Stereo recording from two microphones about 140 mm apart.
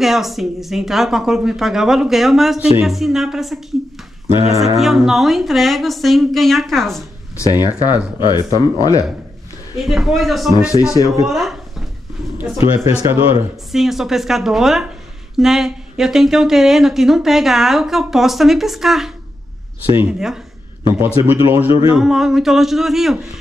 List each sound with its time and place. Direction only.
0.0 s speech: centre (ahead or behind)
4.3 s speech: 45° left (ahead or behind)
4.7 s speech: centre (ahead or behind)
7.3 s speech: 25° left (ahead or behind)
9.8 s speech: centre (ahead or behind)
10.7 s speech: 25° left (ahead or behind)
11.2 s speech: centre (ahead or behind)
12.4 s speech: 20° right (ahead or behind)
13.7 s speech: centre (ahead or behind)
21.9 s speech: 5° right (ahead or behind)